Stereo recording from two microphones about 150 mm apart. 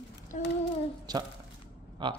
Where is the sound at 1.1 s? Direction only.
25° right (ahead or behind).